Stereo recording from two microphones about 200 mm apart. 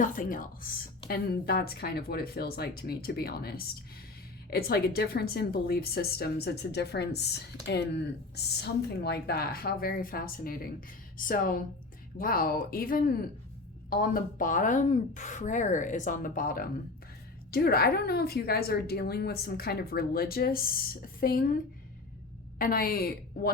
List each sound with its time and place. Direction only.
0.0 s a woman's voice: 45° left (ahead or behind)